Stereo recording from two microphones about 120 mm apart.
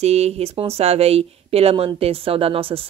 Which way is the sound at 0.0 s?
60° right (ahead or behind).